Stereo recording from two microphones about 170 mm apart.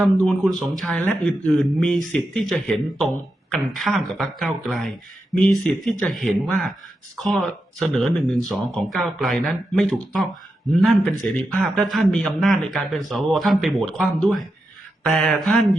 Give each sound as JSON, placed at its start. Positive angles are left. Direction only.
{"t": 0.0, "sound": "speech", "side_deg": 0}